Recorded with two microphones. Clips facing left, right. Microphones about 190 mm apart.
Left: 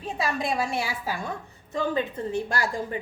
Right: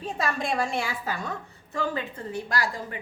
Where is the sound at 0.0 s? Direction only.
Centre (ahead or behind).